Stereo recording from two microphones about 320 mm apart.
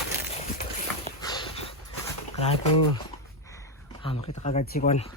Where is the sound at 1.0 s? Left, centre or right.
Centre.